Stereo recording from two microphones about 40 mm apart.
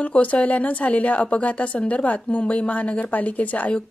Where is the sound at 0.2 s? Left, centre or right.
Left.